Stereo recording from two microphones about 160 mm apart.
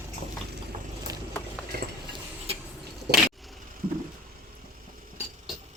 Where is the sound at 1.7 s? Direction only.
75° right (ahead or behind).